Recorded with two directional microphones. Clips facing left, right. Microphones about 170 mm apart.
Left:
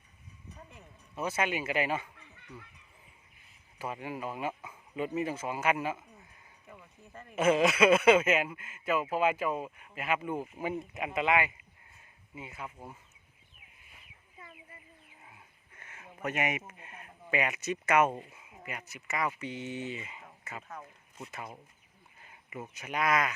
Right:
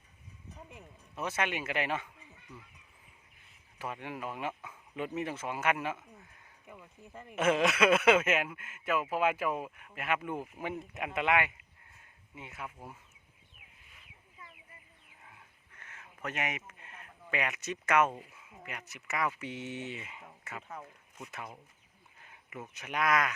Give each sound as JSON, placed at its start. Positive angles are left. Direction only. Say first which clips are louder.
{"t": 1.1, "sound": "speech", "louder": "left 2 dB", "side_deg": 0}
{"t": 2.1, "sound": "fowl", "louder": "left 2 dB", "side_deg": 70}
{"t": 3.8, "sound": "speech", "louder": "left 2 dB", "side_deg": 5}
{"t": 6.7, "sound": "speech", "louder": "right 1 dB", "side_deg": -10}
{"t": 7.3, "sound": "speech", "louder": "left 3 dB", "side_deg": 0}
{"t": 15.2, "sound": "a sound", "louder": "left 1 dB", "side_deg": 10}
{"t": 17.4, "sound": "speech", "louder": "left 3 dB", "side_deg": 5}
{"t": 22.2, "sound": "a sound", "louder": "left 2 dB", "side_deg": 5}
{"t": 22.7, "sound": "speech", "louder": "even", "side_deg": 0}